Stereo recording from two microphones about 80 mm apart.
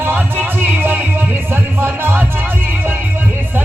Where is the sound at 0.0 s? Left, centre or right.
Right.